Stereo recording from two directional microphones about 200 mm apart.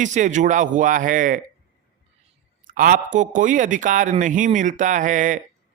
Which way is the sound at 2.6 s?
45° right (ahead or behind).